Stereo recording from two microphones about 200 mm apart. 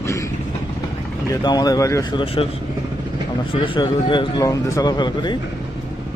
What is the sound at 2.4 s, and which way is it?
Speech, 25° left (ahead or behind).